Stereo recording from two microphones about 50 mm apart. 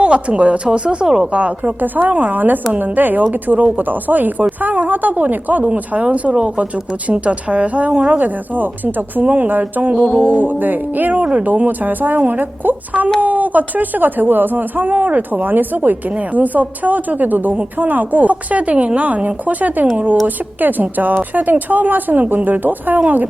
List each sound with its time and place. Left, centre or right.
0.0 s a woman's voice: right
1.3 s a woman's voice: right